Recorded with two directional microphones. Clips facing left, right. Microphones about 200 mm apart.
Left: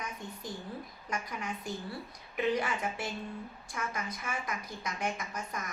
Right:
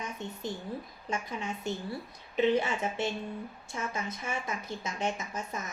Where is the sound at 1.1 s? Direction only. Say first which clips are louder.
Right 2 dB; 25° right (ahead or behind).